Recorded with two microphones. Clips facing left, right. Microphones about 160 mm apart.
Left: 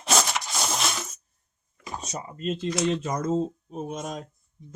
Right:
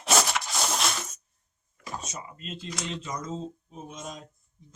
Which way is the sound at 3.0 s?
55° left (ahead or behind).